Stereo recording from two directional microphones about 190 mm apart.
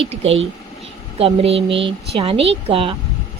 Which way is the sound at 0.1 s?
30° right (ahead or behind).